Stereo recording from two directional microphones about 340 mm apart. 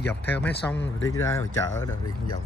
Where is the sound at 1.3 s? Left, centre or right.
Centre.